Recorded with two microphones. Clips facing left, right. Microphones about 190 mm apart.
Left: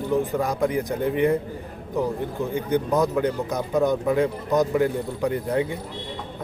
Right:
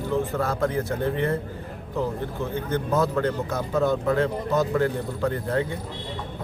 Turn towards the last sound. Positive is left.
turn(degrees=15)  # may be behind; listen again after turning